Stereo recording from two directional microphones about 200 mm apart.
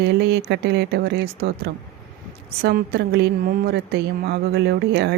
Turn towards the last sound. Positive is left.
turn(degrees=-55)  # may be behind; listen again after turning